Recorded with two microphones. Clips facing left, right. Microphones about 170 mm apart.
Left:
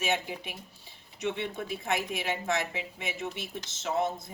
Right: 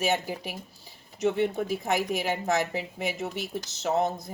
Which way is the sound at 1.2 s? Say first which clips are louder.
Right 7 dB; 40° right (ahead or behind).